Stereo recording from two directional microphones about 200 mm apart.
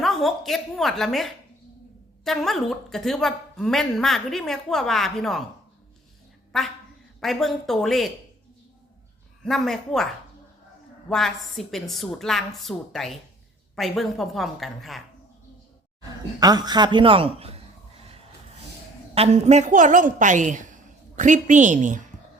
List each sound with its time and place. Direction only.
0.0 s a woman's voice: centre (ahead or behind)
6.5 s a woman's voice: centre (ahead or behind)
9.4 s a woman's voice: centre (ahead or behind)
11.1 s a woman's voice: centre (ahead or behind)
16.4 s a man's voice: 20° right (ahead or behind)
19.1 s a woman's voice: 30° right (ahead or behind)